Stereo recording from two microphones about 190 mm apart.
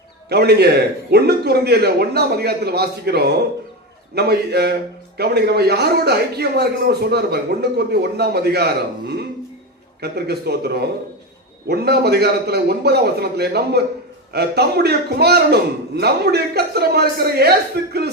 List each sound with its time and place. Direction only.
0.3 s a man's voice: 60° right (ahead or behind)